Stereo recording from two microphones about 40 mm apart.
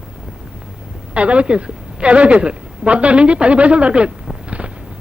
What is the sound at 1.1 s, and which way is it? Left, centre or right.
A man's voice, right.